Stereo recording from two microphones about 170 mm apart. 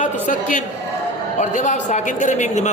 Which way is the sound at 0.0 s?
50° left (ahead or behind).